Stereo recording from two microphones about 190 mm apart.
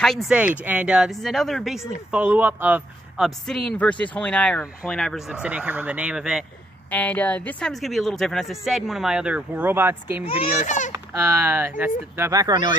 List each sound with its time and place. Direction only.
0.0 s speech: centre (ahead or behind)
3.3 s speech: centre (ahead or behind)
6.9 s speech: 10° left (ahead or behind); by 10.2 s 10° right (ahead or behind)
10.2 s speech: 30° left (ahead or behind)
10.6 s speech: 40° left (ahead or behind)
11.1 s speech: 10° right (ahead or behind)